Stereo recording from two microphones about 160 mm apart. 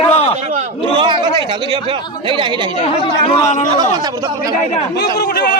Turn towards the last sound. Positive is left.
turn(degrees=85)